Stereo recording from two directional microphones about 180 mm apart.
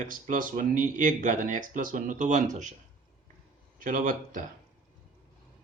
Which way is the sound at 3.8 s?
50° right (ahead or behind).